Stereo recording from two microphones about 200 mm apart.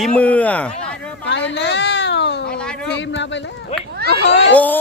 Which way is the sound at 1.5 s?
60° left (ahead or behind).